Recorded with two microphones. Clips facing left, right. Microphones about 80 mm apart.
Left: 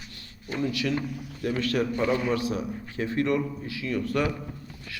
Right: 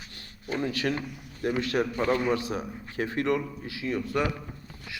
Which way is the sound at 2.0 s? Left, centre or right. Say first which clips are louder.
Even; right.